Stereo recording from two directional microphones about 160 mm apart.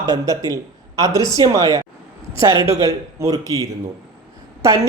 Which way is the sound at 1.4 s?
20° right (ahead or behind).